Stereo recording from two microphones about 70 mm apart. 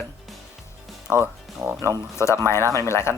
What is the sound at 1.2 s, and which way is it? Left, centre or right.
Speech, right.